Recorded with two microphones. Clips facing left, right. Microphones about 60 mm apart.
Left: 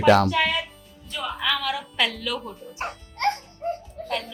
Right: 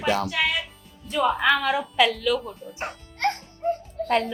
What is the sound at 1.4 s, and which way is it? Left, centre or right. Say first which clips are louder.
Speech: right 5 dB; right.